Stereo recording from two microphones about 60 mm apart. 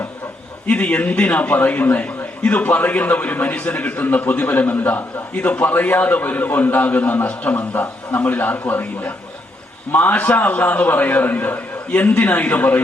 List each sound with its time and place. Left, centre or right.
0.7 s a man's voice: left